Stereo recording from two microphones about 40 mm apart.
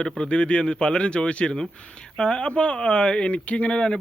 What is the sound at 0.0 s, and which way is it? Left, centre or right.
Speech, left.